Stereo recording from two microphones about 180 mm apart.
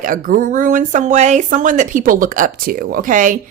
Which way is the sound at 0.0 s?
50° right (ahead or behind).